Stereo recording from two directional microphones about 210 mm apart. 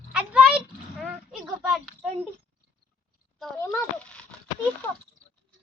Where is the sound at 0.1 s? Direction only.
5° right (ahead or behind).